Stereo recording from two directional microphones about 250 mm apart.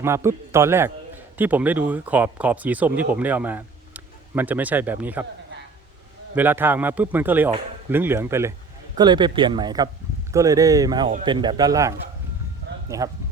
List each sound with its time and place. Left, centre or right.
0.0 s a man's voice: centre
6.3 s a man's voice: centre